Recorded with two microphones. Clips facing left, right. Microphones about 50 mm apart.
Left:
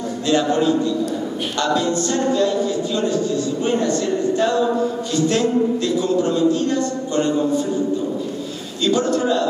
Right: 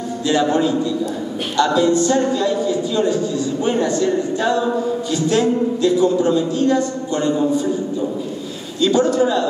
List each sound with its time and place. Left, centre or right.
1.6 s a man's voice: right
5.9 s a man's voice: right
8.9 s a man's voice: right